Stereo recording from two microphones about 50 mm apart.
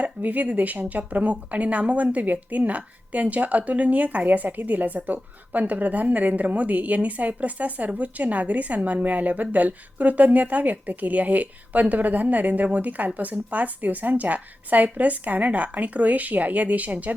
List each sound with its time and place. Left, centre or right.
0.0 s a woman's voice: right